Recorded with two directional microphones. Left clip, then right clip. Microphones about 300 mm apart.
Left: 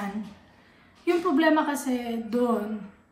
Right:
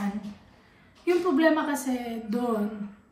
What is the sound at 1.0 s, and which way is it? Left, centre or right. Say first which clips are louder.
A woman's voice: even; centre.